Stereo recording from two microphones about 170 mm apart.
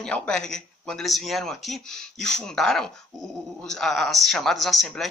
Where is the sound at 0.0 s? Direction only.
5° left (ahead or behind).